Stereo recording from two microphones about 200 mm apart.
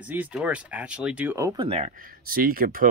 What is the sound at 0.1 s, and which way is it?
Speech, 5° right (ahead or behind).